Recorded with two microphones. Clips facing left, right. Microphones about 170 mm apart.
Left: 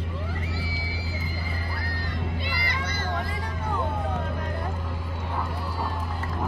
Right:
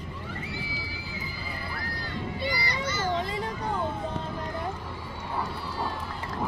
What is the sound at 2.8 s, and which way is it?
Children playing, 55° left (ahead or behind).